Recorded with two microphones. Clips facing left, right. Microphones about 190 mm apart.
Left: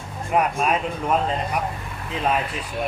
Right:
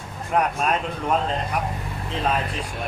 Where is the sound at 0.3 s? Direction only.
5° left (ahead or behind).